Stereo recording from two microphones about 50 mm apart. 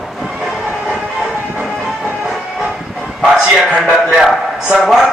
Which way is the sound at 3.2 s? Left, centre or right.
Centre.